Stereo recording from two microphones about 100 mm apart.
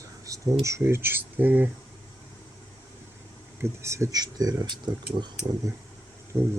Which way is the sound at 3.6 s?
30° right (ahead or behind).